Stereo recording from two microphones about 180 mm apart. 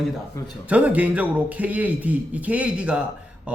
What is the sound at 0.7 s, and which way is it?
A man's voice, 10° right (ahead or behind).